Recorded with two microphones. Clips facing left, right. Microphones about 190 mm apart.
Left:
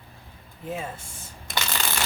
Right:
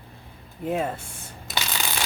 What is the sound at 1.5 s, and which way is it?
Shuffling cards, centre (ahead or behind).